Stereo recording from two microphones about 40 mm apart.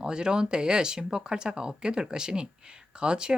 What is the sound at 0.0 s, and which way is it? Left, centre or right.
Speech, centre.